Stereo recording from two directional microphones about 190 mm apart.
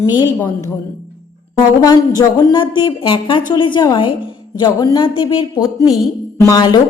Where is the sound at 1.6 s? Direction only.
20° left (ahead or behind).